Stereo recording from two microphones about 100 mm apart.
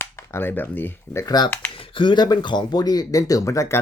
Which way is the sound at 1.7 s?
60° left (ahead or behind).